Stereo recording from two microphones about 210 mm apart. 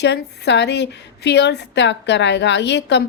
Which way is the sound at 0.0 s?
55° left (ahead or behind).